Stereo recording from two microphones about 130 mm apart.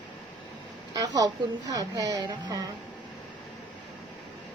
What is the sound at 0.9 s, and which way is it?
A woman's voice, 30° right (ahead or behind).